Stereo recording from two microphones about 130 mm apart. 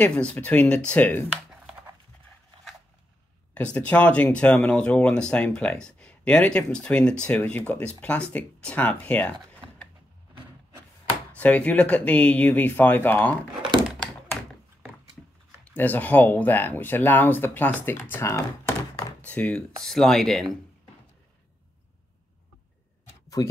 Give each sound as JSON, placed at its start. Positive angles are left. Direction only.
{"t": 0.0, "sound": "speech", "side_deg": 10}
{"t": 1.3, "sound": "a sound", "side_deg": -5}
{"t": 3.5, "sound": "speech", "side_deg": 10}
{"t": 11.3, "sound": "speech", "side_deg": 10}
{"t": 15.6, "sound": "speech", "side_deg": 10}
{"t": 19.2, "sound": "speech", "side_deg": 10}